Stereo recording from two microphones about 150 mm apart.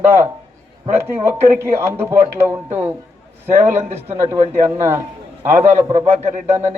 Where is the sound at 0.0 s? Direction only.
15° right (ahead or behind).